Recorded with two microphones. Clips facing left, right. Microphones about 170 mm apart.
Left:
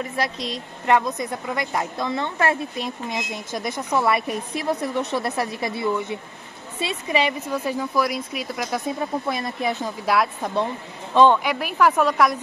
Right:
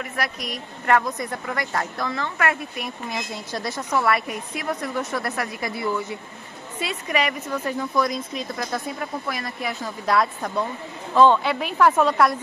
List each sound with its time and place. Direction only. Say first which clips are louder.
0.0 s a woman's voice: left 3 dB; 25° left (ahead or behind)
7.4 s speech: left 1 dB; 10° left (ahead or behind)
10.0 s a woman's voice: even; 5° left (ahead or behind)
10.4 s a woman's voice: left 2 dB; 25° left (ahead or behind)
11.5 s speech: right 1 dB; 5° left (ahead or behind)